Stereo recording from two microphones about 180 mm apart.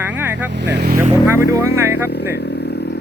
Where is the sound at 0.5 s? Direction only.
70° right (ahead or behind).